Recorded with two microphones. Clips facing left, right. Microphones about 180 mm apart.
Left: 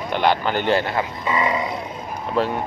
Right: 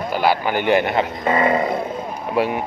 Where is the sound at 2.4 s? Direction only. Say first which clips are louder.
Right 2 dB; 15° right (ahead or behind).